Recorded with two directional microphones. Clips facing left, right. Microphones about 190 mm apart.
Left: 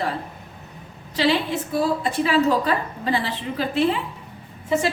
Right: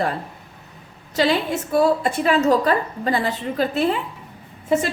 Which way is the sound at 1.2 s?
45° right (ahead or behind).